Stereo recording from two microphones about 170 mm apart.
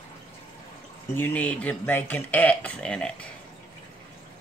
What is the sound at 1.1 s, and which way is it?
Speech, 10° left (ahead or behind).